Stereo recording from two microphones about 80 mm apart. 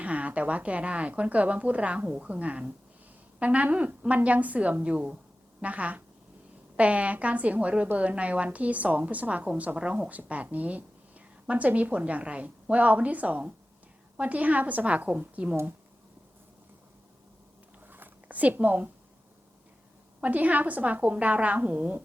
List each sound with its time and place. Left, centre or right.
0.0 s a woman's voice: centre
17.8 s zipper: right
20.2 s a woman's voice: centre